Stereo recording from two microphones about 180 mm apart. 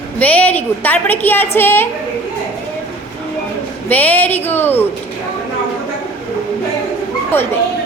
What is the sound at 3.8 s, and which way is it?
A woman's voice, 10° left (ahead or behind).